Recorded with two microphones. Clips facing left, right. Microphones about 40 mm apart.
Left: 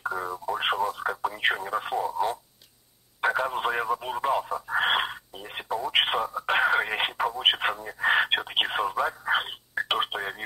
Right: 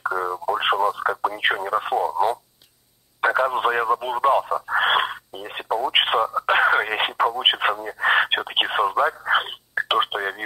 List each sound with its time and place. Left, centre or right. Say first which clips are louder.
0.0 s speech: right 6 dB; centre